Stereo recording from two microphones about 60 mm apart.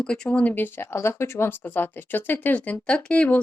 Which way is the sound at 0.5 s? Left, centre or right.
Left.